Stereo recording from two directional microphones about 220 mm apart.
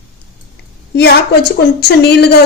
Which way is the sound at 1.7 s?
50° left (ahead or behind).